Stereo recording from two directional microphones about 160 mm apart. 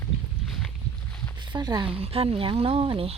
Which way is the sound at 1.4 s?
25° right (ahead or behind).